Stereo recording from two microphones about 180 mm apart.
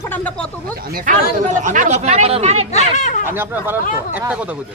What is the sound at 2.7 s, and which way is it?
Speech, 40° left (ahead or behind).